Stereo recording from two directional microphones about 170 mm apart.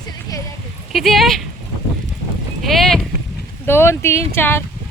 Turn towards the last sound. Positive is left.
turn(degrees=15)  # may be behind; listen again after turning